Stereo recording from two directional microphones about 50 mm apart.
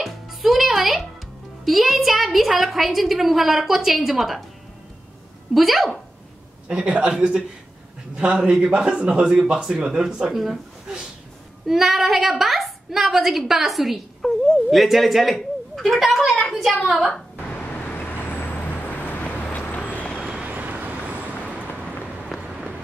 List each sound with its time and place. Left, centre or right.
0.0 s music: centre
1.6 s a woman's voice: centre
5.5 s speech: centre
6.7 s a man's voice: centre
9.2 s speech: centre
11.6 s a woman's voice: centre
17.9 s vehicle: left
20.2 s vehicle: centre
20.4 s vehicle: right
22.3 s vehicle: centre